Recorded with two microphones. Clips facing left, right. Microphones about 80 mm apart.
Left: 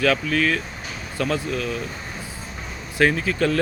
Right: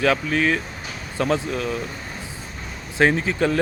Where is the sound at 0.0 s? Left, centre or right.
Right.